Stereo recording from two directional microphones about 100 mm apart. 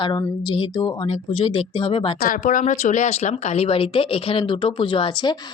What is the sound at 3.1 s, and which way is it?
Speech, 90° left.